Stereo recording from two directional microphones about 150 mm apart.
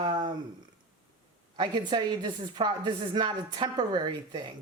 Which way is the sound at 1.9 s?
30° right (ahead or behind).